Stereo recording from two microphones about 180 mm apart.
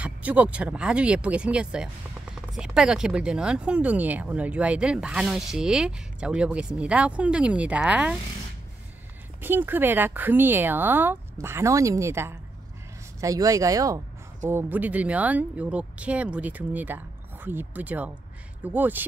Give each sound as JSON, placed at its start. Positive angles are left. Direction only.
{"t": 0.0, "sound": "speech", "side_deg": -10}
{"t": 9.4, "sound": "speech", "side_deg": -10}